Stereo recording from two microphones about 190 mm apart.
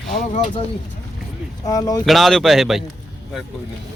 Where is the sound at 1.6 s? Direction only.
20° left (ahead or behind).